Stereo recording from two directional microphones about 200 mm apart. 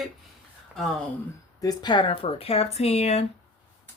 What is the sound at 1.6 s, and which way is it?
Speech, 20° left (ahead or behind).